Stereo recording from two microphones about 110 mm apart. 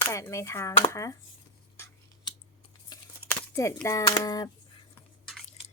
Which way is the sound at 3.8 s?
30° left (ahead or behind).